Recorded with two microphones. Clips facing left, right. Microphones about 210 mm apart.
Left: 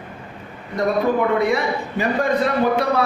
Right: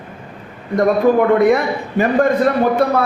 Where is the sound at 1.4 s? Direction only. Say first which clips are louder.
Right 6 dB; 50° right (ahead or behind).